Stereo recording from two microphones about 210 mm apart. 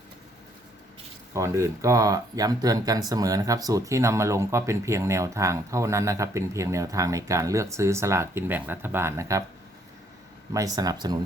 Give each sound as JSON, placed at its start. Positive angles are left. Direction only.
{"t": 1.3, "sound": "speech", "side_deg": -15}
{"t": 10.5, "sound": "speech", "side_deg": -15}